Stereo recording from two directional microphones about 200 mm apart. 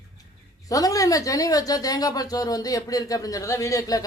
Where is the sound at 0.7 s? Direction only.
15° left (ahead or behind).